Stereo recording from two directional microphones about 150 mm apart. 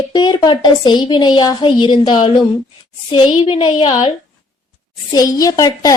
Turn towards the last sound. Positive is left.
turn(degrees=25)  # may be behind; listen again after turning